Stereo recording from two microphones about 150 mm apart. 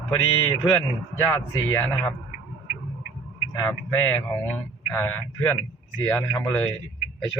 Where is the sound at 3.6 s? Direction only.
15° left (ahead or behind).